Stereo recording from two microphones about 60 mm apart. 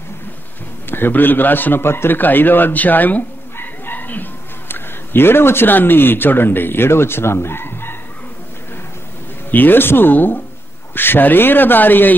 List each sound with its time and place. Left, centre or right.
0.8 s a man's voice: left
9.5 s speech: left